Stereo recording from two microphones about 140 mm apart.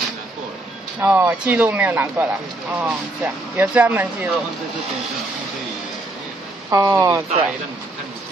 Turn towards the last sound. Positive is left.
turn(degrees=-25)  # may be behind; listen again after turning